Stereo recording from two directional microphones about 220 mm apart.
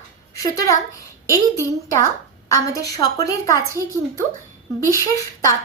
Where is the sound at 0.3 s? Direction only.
15° left (ahead or behind).